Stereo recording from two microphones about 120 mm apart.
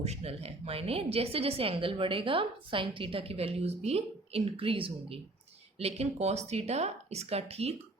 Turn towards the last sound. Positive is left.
turn(degrees=-60)  # may be behind; listen again after turning